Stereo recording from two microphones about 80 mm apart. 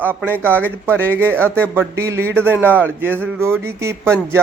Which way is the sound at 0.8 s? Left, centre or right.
Right.